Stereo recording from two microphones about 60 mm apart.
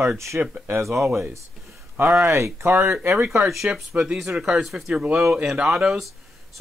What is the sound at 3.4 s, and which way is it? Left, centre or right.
Speech, centre.